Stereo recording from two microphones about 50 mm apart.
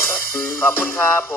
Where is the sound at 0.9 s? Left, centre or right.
Left.